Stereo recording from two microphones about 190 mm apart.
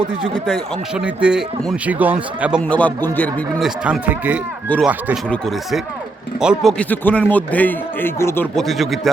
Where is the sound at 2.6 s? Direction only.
5° left (ahead or behind).